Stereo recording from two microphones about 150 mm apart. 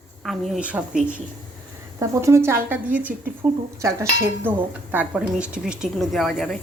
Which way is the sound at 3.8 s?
20° right (ahead or behind).